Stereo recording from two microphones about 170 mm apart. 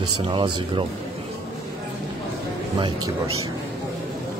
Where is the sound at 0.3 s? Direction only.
30° right (ahead or behind).